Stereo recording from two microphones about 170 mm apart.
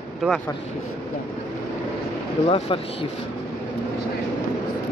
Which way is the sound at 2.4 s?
35° left (ahead or behind).